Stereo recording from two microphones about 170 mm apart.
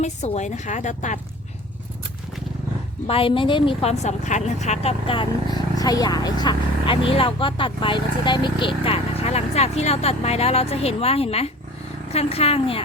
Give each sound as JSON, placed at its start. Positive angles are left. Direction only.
{"t": 0.0, "sound": "a woman's voice", "side_deg": 45}
{"t": 3.1, "sound": "speech", "side_deg": 30}